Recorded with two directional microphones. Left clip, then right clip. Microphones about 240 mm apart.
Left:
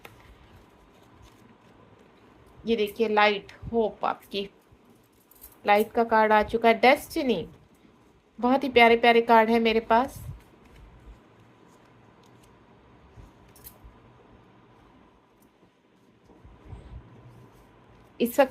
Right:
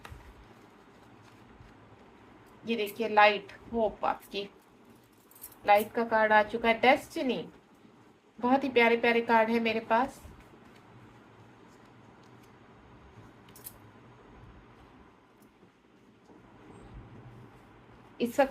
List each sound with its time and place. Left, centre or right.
2.6 s a woman's voice: left
5.6 s a woman's voice: left